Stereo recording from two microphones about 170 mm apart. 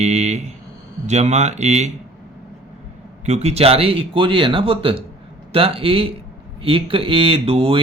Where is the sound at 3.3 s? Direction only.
40° right (ahead or behind).